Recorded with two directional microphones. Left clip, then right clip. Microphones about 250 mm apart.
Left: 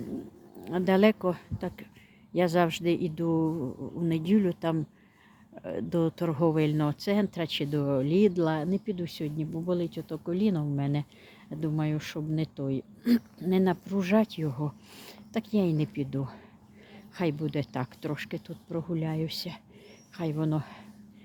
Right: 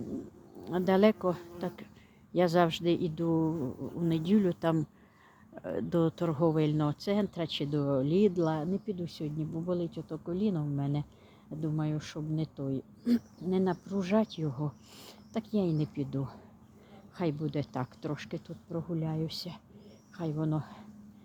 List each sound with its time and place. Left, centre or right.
0.6 s speech: centre